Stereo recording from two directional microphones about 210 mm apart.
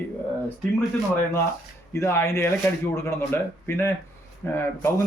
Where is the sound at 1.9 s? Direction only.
10° left (ahead or behind).